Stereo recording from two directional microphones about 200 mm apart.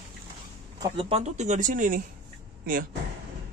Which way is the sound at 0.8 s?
25° right (ahead or behind).